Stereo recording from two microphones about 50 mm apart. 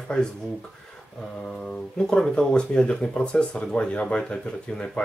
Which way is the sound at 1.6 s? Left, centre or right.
Centre.